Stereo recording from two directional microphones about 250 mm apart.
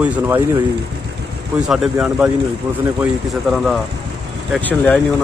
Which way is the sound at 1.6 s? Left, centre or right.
Centre.